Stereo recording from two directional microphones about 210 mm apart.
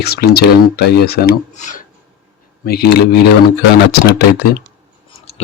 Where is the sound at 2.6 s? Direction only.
50° left (ahead or behind).